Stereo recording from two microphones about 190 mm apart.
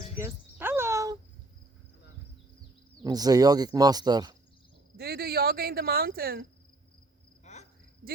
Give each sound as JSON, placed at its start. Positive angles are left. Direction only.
{"t": 0.2, "sound": "a sound", "side_deg": -15}
{"t": 3.0, "sound": "speech", "side_deg": -20}
{"t": 4.9, "sound": "speech", "side_deg": -55}
{"t": 7.4, "sound": "cricket", "side_deg": 35}